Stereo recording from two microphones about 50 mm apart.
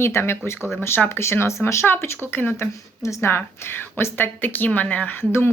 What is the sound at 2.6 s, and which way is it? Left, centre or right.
Speech, left.